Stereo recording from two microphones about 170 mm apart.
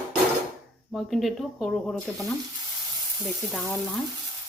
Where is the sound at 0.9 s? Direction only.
Centre (ahead or behind).